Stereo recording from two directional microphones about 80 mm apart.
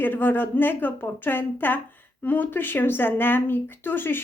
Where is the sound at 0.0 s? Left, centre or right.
Left.